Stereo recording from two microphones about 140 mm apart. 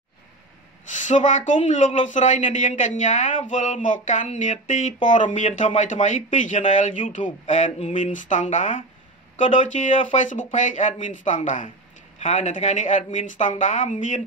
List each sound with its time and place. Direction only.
0.9 s speech: 65° left (ahead or behind)